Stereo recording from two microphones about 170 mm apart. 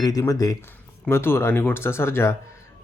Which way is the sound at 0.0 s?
20° left (ahead or behind).